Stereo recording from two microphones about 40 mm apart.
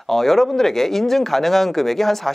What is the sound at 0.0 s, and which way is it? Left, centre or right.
Speech, centre.